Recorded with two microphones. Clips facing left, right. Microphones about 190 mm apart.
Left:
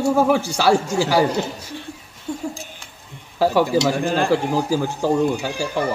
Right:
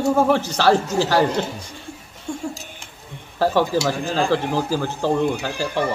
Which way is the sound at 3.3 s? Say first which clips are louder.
Left 2 dB; 10° left (ahead or behind).